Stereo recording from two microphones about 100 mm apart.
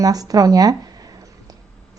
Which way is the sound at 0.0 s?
40° right (ahead or behind).